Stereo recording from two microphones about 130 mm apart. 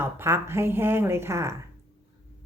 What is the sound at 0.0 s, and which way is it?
A woman's voice, 20° right (ahead or behind).